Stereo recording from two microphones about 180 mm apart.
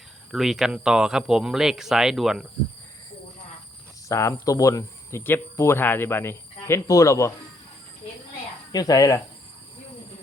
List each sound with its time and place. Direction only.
0.3 s speech: centre (ahead or behind)
4.1 s speech: 15° left (ahead or behind)
8.7 s speech: 20° left (ahead or behind)